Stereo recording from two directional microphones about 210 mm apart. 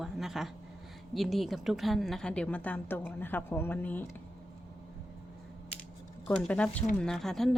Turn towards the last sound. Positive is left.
turn(degrees=0)  # may be behind; listen again after turning